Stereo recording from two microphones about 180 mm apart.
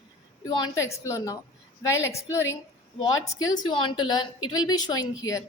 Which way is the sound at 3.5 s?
25° left (ahead or behind).